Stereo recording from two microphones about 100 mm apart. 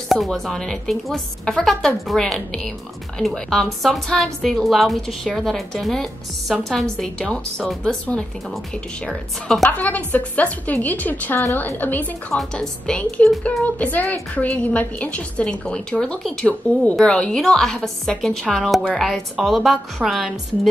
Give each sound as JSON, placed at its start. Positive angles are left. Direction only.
{"t": 0.1, "sound": "a woman's voice", "side_deg": 0}
{"t": 9.7, "sound": "a woman's voice", "side_deg": 15}